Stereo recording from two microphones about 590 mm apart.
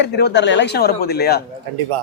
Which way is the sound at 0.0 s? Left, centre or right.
Centre.